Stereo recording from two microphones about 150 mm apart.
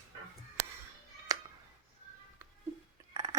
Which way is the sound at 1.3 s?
25° right (ahead or behind).